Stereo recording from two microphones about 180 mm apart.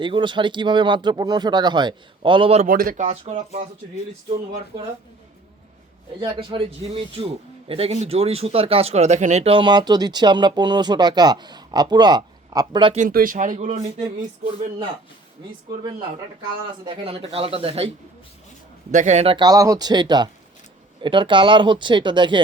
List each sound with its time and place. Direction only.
0.0 s speech: 25° right (ahead or behind)
2.6 s speech: 50° right (ahead or behind)
3.1 s speech: 35° right (ahead or behind)
6.1 s speech: 25° right (ahead or behind)
7.7 s speech: 35° right (ahead or behind)
13.0 s speech: 50° right (ahead or behind); by 14.8 s 35° right (ahead or behind)
16.8 s speech: 30° right (ahead or behind)